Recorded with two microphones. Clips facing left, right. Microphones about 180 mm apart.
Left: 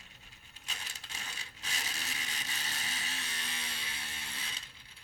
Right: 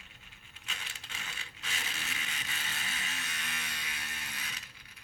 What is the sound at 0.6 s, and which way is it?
Coin, 40° left (ahead or behind).